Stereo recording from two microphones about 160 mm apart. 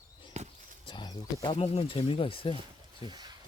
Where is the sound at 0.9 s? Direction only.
25° left (ahead or behind).